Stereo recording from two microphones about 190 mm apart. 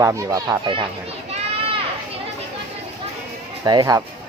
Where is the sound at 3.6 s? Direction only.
20° right (ahead or behind).